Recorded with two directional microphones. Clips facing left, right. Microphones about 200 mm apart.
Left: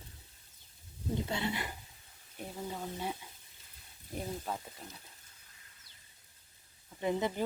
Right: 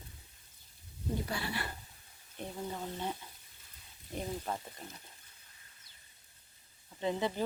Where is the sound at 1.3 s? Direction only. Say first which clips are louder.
Left 2 dB; 20° left (ahead or behind).